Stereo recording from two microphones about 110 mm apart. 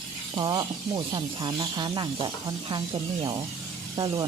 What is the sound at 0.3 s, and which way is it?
Speech, 40° right (ahead or behind).